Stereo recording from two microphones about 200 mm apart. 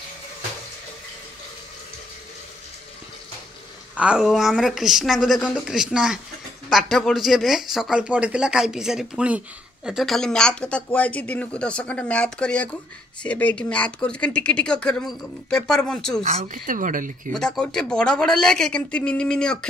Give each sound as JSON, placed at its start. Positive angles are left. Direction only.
{"t": 3.9, "sound": "speech", "side_deg": -5}
{"t": 16.2, "sound": "a woman's voice", "side_deg": -40}
{"t": 17.3, "sound": "speech", "side_deg": 5}